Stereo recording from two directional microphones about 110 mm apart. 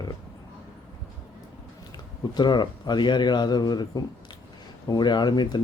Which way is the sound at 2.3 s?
40° left (ahead or behind).